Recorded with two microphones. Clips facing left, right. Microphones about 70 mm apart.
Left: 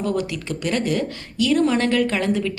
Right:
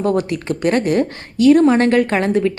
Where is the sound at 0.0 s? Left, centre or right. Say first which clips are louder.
Right 6 dB; right.